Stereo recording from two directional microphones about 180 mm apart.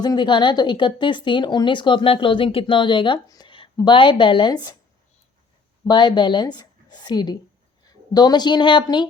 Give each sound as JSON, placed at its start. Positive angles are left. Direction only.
{"t": 0.0, "sound": "speech", "side_deg": 25}
{"t": 5.9, "sound": "a woman's voice", "side_deg": 25}